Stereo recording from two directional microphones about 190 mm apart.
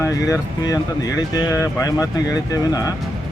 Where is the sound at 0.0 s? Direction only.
20° left (ahead or behind).